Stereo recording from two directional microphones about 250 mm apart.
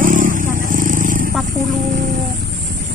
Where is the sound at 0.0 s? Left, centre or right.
Right.